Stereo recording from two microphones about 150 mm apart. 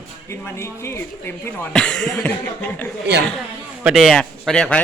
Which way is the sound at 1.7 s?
5° left (ahead or behind).